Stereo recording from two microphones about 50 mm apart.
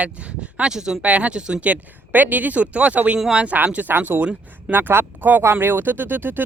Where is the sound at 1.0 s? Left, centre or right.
Right.